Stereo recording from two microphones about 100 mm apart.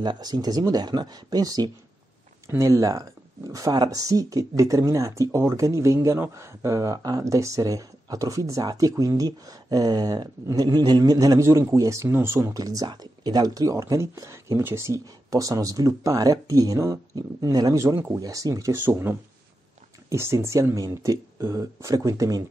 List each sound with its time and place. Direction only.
0.0 s speech: 45° right (ahead or behind)
17.9 s speech: 20° right (ahead or behind)
18.2 s speech: 35° right (ahead or behind)
18.9 s speech: 20° right (ahead or behind)